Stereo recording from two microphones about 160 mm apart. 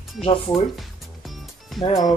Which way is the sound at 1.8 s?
35° left (ahead or behind).